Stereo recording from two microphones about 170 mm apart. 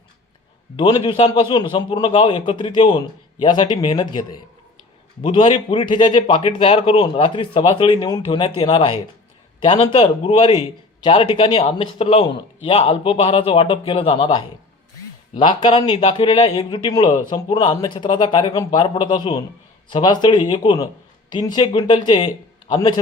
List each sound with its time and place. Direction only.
0.8 s a man's voice: 30° left (ahead or behind)
15.4 s a man's voice: 30° left (ahead or behind)